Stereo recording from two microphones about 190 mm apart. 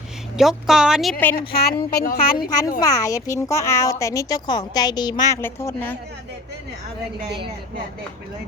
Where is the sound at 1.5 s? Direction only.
55° left (ahead or behind).